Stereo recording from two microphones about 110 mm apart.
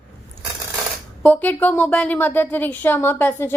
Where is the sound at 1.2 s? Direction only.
15° left (ahead or behind).